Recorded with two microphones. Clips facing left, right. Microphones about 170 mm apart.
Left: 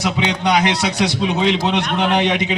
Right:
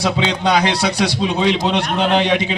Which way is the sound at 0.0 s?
20° left (ahead or behind).